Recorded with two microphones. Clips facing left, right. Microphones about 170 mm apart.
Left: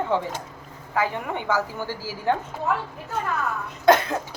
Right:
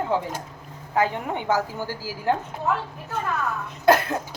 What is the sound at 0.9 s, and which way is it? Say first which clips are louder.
A woman's voice: right 2 dB; 20° right (ahead or behind).